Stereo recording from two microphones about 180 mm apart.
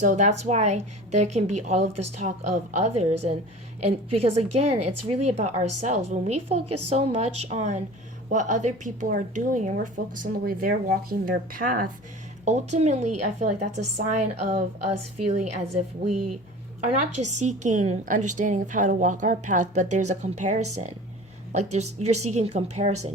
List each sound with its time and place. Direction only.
0.0 s a woman's voice: 45° right (ahead or behind)
12.5 s speech: 40° right (ahead or behind)
16.8 s a woman's voice: 40° right (ahead or behind)